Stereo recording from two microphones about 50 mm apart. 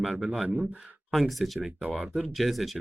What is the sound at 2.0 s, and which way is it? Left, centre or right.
Speech, centre.